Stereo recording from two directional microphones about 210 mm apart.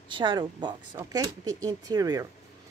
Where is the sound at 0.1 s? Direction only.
20° right (ahead or behind).